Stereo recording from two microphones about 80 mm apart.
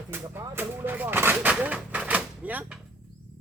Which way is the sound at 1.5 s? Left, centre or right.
Centre.